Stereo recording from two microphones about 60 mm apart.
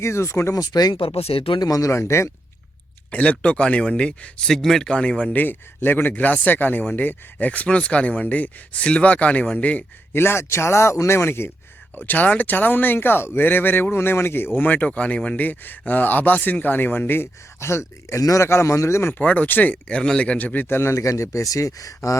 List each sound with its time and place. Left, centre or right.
0.0 s a man's voice: left
0.5 s speech: left
1.6 s speech: left
1.9 s a man's voice: left
3.1 s speech: left
10.1 s a man's voice: left
11.9 s speech: left
18.2 s speech: left
18.4 s a man's voice: left
19.2 s speech: left
19.9 s speech: centre; by 20.9 s left
20.9 s speech: left